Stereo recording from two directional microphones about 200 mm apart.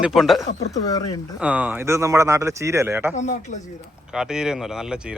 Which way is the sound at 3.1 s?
40° left (ahead or behind).